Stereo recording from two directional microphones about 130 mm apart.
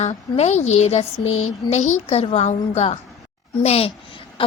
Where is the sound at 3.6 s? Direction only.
50° left (ahead or behind).